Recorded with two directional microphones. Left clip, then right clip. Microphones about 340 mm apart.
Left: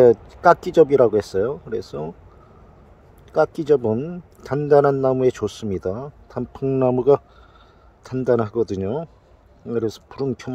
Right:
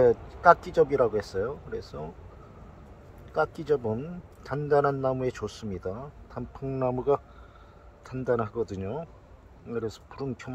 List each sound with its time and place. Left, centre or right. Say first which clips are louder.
0.0 s a man's voice: left 7 dB; left
3.3 s a man's voice: left 9 dB; left